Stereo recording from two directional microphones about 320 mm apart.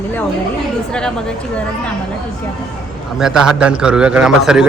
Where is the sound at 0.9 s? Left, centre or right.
Centre.